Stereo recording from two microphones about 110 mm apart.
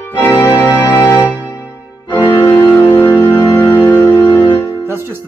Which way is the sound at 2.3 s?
25° left (ahead or behind).